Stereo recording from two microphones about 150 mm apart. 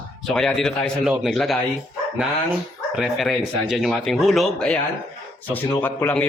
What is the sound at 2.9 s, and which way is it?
Speech, centre (ahead or behind).